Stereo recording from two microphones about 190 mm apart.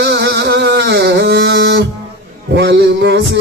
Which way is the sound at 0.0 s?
65° right (ahead or behind).